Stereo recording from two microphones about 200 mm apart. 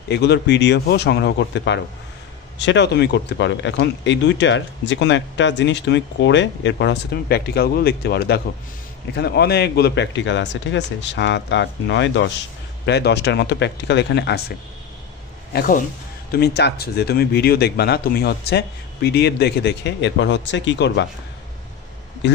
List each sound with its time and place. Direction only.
0.1 s speech: 55° left (ahead or behind)
15.5 s speech: 45° left (ahead or behind); by 21.1 s 60° left (ahead or behind)
22.2 s a man's voice: 60° left (ahead or behind)